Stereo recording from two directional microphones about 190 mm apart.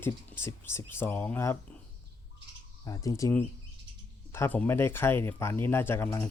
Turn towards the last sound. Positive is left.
turn(degrees=10)  # may be behind; listen again after turning